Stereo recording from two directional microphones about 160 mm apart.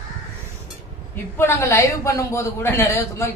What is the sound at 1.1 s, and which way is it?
A woman's voice, 15° left (ahead or behind).